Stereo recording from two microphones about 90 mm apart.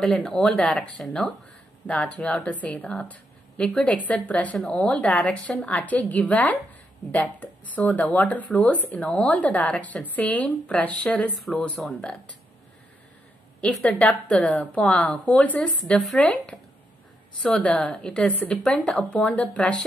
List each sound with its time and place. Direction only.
0.0 s speech: 5° left (ahead or behind)
13.8 s speech: 15° left (ahead or behind)